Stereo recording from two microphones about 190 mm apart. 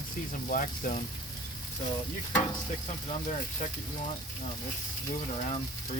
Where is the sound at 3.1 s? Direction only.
35° left (ahead or behind).